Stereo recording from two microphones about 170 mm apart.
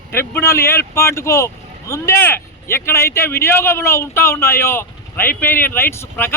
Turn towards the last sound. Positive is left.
turn(degrees=15)  # may be behind; listen again after turning